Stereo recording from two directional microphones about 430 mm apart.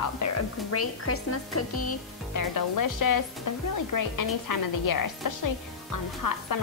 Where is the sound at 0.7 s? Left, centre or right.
Left.